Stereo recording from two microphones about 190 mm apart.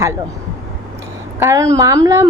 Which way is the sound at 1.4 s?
15° right (ahead or behind).